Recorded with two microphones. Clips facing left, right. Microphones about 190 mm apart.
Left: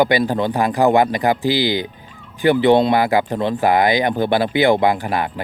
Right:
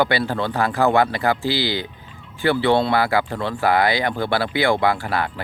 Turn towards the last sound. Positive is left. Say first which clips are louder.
# left 3 dB
turn(degrees=15)  # may be behind; listen again after turning